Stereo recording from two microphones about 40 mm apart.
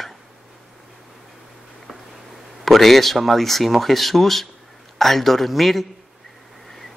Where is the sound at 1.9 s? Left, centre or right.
Centre.